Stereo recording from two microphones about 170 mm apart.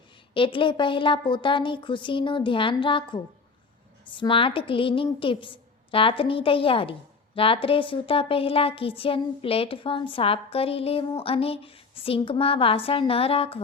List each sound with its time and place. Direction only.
0.3 s a woman's voice: 30° left (ahead or behind)